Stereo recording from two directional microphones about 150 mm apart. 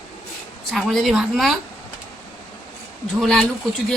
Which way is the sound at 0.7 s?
Centre (ahead or behind).